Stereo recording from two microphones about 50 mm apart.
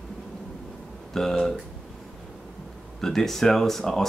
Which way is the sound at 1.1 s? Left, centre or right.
Centre.